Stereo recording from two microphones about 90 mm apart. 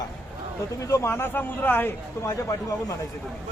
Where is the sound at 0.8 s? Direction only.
35° left (ahead or behind).